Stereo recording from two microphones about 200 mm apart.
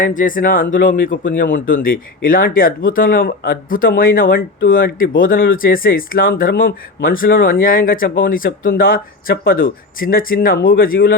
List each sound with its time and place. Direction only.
0.0 s speech: 40° left (ahead or behind)